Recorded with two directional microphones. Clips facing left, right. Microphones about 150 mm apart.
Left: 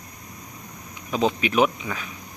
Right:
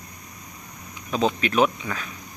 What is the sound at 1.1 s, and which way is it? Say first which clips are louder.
Speech: even; 15° left (ahead or behind).